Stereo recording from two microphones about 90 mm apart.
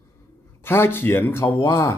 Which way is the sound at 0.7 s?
25° left (ahead or behind).